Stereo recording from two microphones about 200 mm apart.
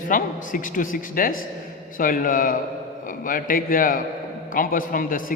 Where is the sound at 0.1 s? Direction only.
40° left (ahead or behind).